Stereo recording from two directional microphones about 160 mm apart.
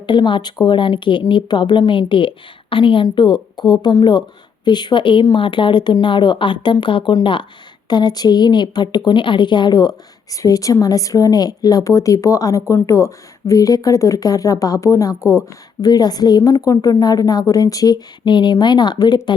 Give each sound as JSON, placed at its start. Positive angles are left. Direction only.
{"t": 0.0, "sound": "a woman's voice", "side_deg": 30}